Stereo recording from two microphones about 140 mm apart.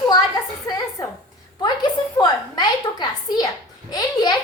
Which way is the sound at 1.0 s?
25° left (ahead or behind).